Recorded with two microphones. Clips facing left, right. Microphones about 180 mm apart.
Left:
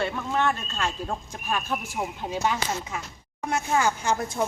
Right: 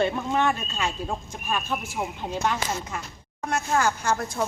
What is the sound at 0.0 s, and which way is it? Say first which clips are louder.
Speech: right 2 dB; 20° right (ahead or behind).